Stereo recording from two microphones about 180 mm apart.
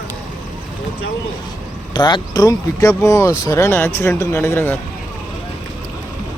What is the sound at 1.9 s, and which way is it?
Speech, 25° left (ahead or behind).